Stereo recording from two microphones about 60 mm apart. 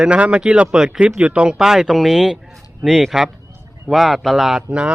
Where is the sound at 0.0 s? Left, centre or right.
Centre.